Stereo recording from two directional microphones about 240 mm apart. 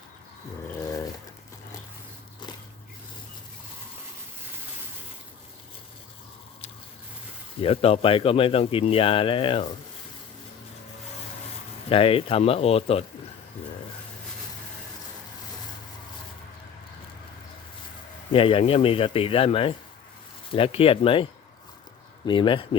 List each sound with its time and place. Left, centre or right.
7.6 s speech: left
11.9 s speech: left
18.3 s speech: left
22.3 s speech: left